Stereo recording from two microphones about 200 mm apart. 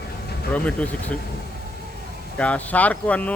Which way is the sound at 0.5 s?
5° left (ahead or behind).